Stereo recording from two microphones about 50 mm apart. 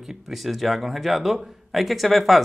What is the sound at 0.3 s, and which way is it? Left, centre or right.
Speech, centre.